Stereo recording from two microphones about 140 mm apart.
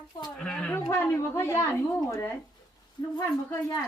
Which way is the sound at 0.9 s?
15° left (ahead or behind).